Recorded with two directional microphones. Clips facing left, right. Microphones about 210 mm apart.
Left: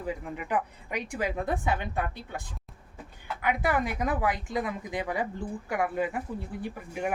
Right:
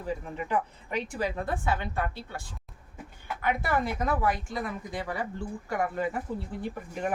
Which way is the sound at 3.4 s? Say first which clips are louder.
Left 1 dB; 15° left (ahead or behind).